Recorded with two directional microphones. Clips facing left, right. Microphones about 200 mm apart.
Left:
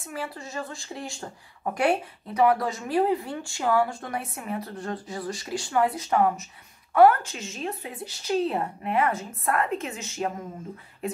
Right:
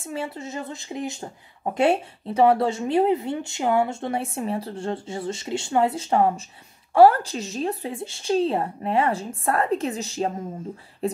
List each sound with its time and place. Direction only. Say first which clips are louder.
0.0 s a woman's voice: right 4 dB; 25° right (ahead or behind)